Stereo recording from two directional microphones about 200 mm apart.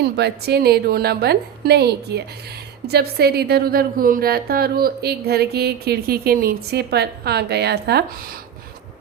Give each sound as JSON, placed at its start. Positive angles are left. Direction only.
{"t": 0.0, "sound": "a woman's voice", "side_deg": -55}